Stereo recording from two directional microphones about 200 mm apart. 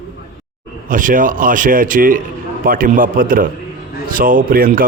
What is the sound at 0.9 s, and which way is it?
Speech, 40° right (ahead or behind).